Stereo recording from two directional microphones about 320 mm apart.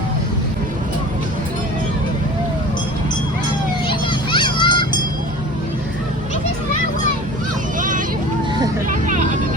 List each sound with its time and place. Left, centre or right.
3.8 s children playing: centre
7.8 s vehicle: right